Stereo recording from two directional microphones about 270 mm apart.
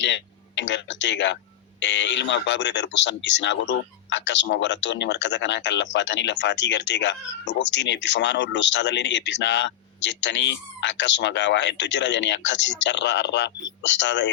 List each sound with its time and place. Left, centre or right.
0.0 s speech: left